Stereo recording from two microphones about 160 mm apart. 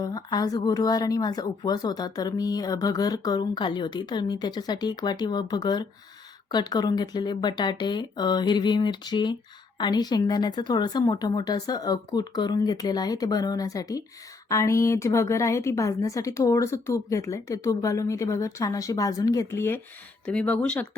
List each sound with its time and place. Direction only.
0.0 s speech: 25° left (ahead or behind); by 20.8 s 5° left (ahead or behind)